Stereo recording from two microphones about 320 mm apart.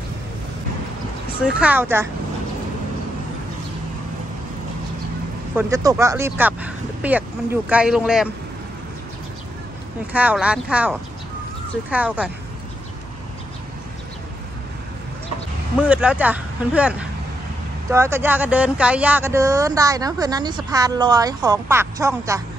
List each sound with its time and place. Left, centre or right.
1.4 s speech: centre
5.6 s speech: centre
10.1 s speech: centre
15.9 s speech: centre
17.9 s speech: centre